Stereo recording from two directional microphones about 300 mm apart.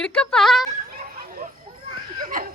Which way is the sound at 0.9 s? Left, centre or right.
Right.